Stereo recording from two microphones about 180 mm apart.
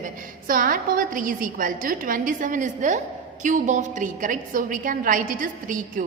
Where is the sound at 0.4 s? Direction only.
50° right (ahead or behind).